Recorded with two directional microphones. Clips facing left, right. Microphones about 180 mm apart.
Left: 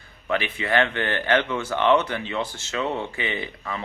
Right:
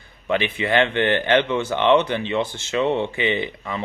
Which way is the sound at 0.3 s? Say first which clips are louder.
Right 3 dB; 20° right (ahead or behind).